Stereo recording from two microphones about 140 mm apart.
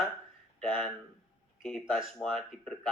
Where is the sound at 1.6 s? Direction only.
Centre (ahead or behind).